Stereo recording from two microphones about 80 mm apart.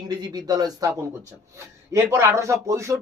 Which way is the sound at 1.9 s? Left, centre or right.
Right.